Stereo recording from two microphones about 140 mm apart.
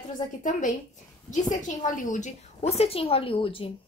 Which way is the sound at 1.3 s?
65° left (ahead or behind).